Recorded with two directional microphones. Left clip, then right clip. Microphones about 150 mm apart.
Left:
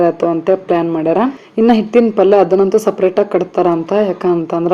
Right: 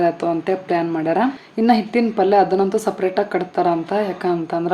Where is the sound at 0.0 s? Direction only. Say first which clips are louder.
Left 6 dB; 10° left (ahead or behind).